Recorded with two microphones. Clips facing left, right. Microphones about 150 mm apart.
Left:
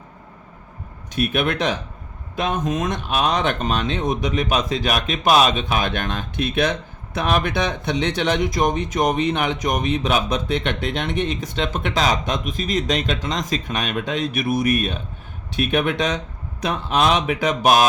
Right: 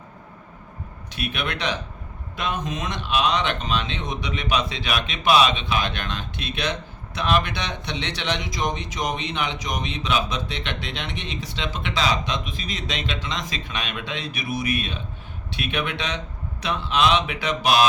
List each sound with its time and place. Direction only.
1.1 s speech: 45° left (ahead or behind)